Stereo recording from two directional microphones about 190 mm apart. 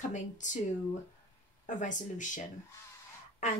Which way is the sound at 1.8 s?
40° left (ahead or behind).